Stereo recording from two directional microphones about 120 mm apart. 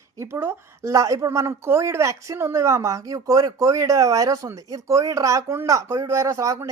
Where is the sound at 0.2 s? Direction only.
20° right (ahead or behind).